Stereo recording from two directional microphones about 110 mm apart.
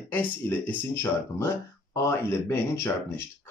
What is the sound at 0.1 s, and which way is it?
A man's voice, 15° left (ahead or behind).